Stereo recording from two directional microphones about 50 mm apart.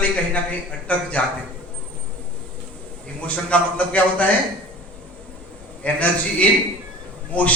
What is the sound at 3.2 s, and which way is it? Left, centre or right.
A man's voice, left.